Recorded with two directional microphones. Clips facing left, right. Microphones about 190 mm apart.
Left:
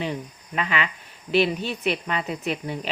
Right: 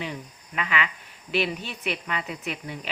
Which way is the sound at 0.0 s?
30° left (ahead or behind).